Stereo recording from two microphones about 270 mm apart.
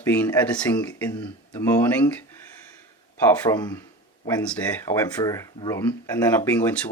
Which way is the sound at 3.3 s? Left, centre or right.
Centre.